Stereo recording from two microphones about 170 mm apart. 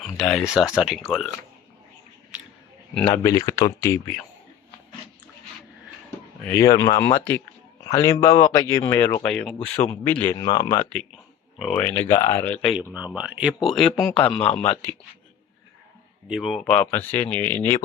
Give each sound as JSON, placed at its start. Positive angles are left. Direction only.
{"t": 0.2, "sound": "speech", "side_deg": 0}
{"t": 3.2, "sound": "speech", "side_deg": 20}
{"t": 6.5, "sound": "speech", "side_deg": 15}
{"t": 10.3, "sound": "speech", "side_deg": 30}
{"t": 11.6, "sound": "speech", "side_deg": 5}
{"t": 12.0, "sound": "speech", "side_deg": 20}
{"t": 12.5, "sound": "speech", "side_deg": 0}
{"t": 16.3, "sound": "speech", "side_deg": 0}